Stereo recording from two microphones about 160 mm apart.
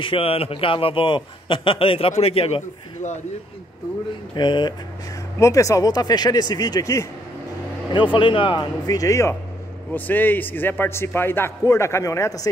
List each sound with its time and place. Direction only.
0.0 s a man's voice: 35° left (ahead or behind)
4.4 s speech: 30° left (ahead or behind)
7.9 s a man's voice: 30° left (ahead or behind)